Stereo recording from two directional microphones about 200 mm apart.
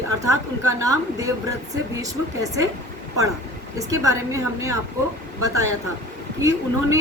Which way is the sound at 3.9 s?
15° right (ahead or behind).